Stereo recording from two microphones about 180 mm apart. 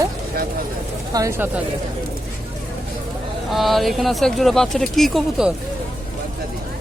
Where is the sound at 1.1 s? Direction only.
15° right (ahead or behind).